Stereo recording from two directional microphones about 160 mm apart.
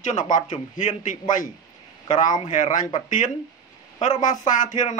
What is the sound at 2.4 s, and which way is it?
Speech, 50° left (ahead or behind).